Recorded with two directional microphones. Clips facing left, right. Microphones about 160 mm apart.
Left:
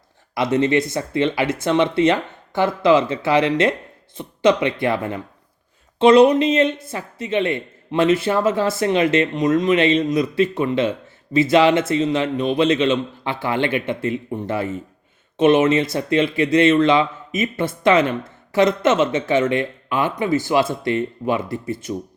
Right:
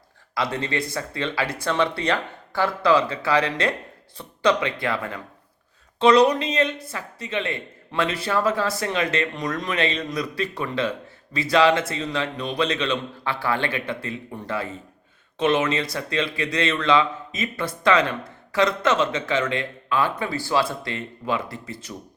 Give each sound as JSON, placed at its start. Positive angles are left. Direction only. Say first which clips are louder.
{"t": 0.3, "sound": "speech", "louder": "left 8 dB", "side_deg": 25}